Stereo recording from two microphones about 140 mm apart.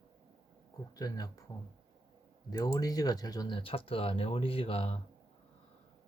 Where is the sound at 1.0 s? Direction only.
25° left (ahead or behind); by 5.0 s 40° left (ahead or behind).